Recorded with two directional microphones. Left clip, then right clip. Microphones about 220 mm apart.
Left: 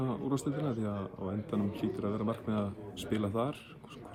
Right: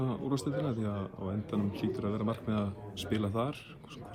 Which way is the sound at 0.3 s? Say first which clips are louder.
Right 1 dB; 15° right (ahead or behind).